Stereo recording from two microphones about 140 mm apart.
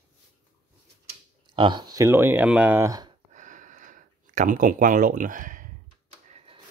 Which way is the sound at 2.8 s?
25° right (ahead or behind).